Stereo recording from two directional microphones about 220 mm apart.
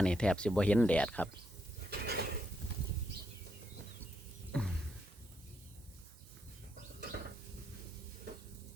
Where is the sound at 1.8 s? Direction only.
45° right (ahead or behind).